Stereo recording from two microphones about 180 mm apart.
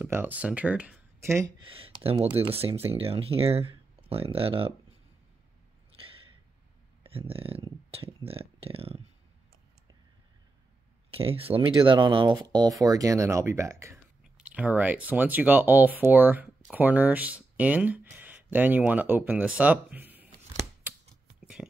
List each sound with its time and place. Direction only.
0.0 s speech: 10° right (ahead or behind)
1.7 s speech: 30° right (ahead or behind)
5.9 s a sound: 30° right (ahead or behind)
7.0 s speech: 30° right (ahead or behind)
11.1 s speech: 30° right (ahead or behind); by 20.2 s 10° right (ahead or behind)
21.6 s a sound: 5° left (ahead or behind)